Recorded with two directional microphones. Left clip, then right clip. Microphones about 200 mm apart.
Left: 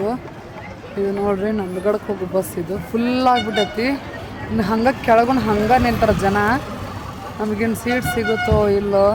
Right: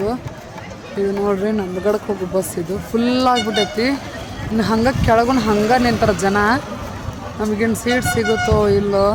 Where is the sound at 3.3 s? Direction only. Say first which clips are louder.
Right 1 dB; 45° right (ahead or behind).